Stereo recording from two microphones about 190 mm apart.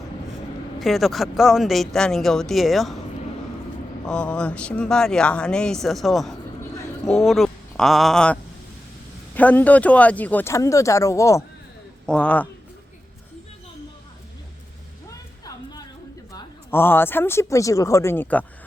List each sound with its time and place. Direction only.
0.8 s speech: centre (ahead or behind)
4.0 s speech: 5° left (ahead or behind)
12.0 s speech: 5° left (ahead or behind)
15.4 s music: 20° left (ahead or behind)
16.3 s speech: 10° left (ahead or behind)